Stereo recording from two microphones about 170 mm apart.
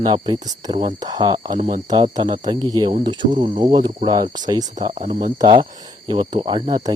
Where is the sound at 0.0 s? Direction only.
25° right (ahead or behind).